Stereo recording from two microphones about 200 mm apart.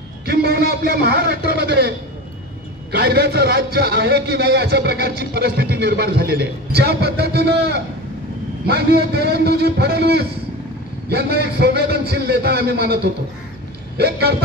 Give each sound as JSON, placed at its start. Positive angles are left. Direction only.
{"t": 0.2, "sound": "a man's voice", "side_deg": -50}